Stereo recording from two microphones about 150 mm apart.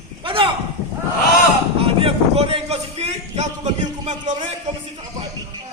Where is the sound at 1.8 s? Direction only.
40° right (ahead or behind).